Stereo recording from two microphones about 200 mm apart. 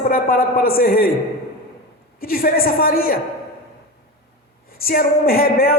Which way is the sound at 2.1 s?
50° left (ahead or behind).